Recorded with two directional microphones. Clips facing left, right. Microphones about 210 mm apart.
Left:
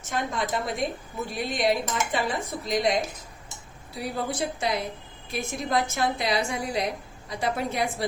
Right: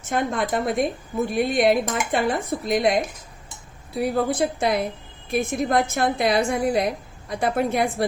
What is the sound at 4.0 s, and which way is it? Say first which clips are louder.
A woman's voice: right 8 dB; 55° right (ahead or behind).